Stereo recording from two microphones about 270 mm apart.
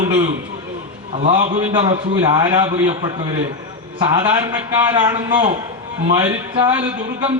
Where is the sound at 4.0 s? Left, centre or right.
Centre.